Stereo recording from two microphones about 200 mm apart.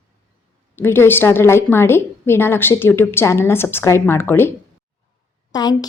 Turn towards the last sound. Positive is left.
turn(degrees=20)  # may be behind; listen again after turning